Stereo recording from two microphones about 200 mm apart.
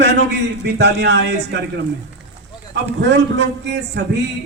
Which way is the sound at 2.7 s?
60° right (ahead or behind).